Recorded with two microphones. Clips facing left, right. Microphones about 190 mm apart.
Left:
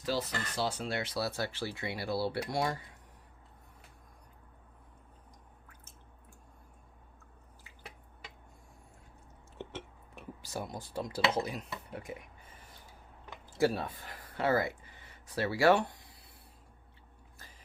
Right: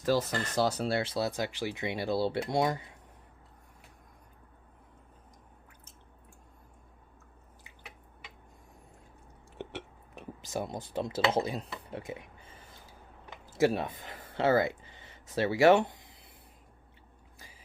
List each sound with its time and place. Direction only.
0.0 s speech: 45° right (ahead or behind); by 2.8 s 20° right (ahead or behind)
9.6 s dishes: 15° right (ahead or behind)
13.6 s speech: 20° right (ahead or behind)